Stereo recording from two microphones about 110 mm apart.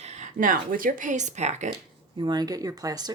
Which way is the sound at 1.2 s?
90° right.